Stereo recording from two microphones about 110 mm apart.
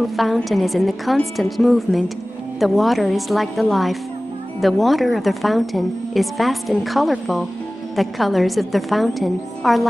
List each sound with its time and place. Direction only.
0.2 s a woman's voice: centre (ahead or behind)